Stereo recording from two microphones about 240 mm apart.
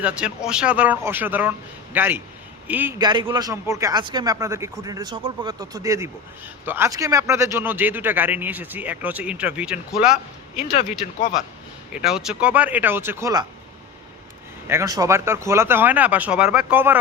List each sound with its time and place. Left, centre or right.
0.0 s a man's voice: centre
3.0 s speech: centre
10.6 s speech: left
11.9 s speech: centre
14.7 s speech: centre